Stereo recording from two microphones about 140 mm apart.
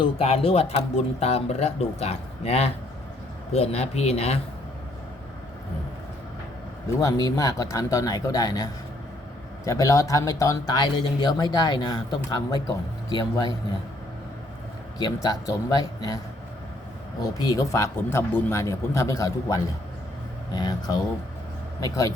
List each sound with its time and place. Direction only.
0.0 s speech: 45° left (ahead or behind)
7.0 s a man's voice: 25° left (ahead or behind)
14.9 s speech: 25° left (ahead or behind)
17.3 s speech: 25° left (ahead or behind)